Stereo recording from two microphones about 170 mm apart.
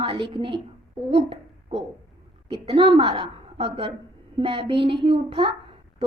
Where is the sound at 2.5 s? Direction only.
30° right (ahead or behind).